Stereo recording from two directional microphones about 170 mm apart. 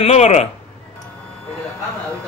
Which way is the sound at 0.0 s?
40° left (ahead or behind).